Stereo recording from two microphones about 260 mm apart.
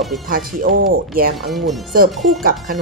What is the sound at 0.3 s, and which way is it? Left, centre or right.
A woman's voice, right.